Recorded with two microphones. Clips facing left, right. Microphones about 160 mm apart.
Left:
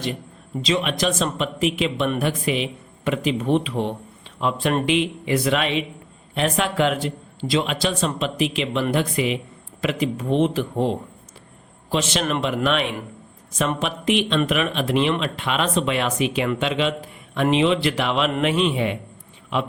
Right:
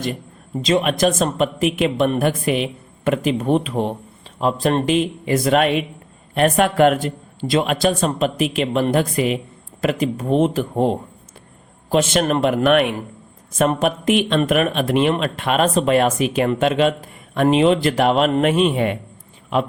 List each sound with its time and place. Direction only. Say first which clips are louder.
0.6 s a man's voice: right 5 dB; 45° right (ahead or behind)